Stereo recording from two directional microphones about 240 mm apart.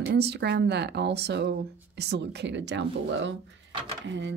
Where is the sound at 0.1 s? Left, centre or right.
Right.